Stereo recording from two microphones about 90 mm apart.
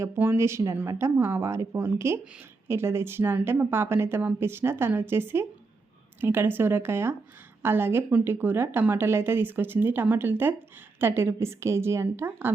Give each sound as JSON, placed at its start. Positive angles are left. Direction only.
{"t": 0.0, "sound": "a woman's voice", "side_deg": -25}